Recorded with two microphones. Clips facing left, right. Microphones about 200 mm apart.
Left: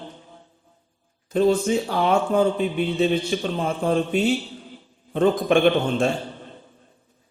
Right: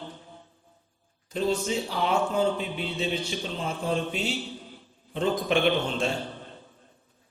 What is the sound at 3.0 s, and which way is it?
A man's voice, 55° left (ahead or behind).